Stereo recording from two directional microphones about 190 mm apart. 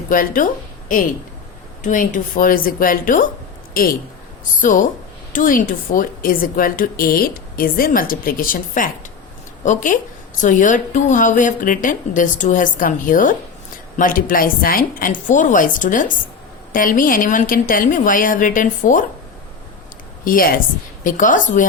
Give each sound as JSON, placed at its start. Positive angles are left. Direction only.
{"t": 0.1, "sound": "a woman's voice", "side_deg": 45}
{"t": 4.6, "sound": "speech", "side_deg": 45}
{"t": 20.2, "sound": "speech", "side_deg": 50}